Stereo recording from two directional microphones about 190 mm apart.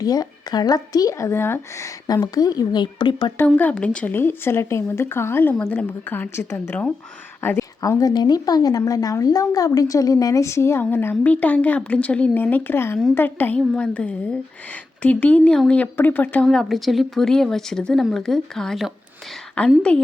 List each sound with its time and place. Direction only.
0.0 s speech: 20° left (ahead or behind)
3.3 s speech: 10° left (ahead or behind)